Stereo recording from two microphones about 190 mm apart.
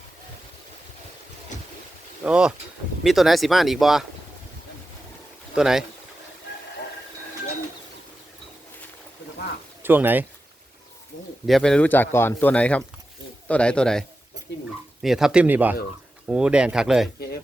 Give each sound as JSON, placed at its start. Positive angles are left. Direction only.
{"t": 2.2, "sound": "speech", "side_deg": -5}
{"t": 5.5, "sound": "speech", "side_deg": 0}
{"t": 9.8, "sound": "speech", "side_deg": -10}
{"t": 11.4, "sound": "a man's voice", "side_deg": 0}
{"t": 15.0, "sound": "speech", "side_deg": 0}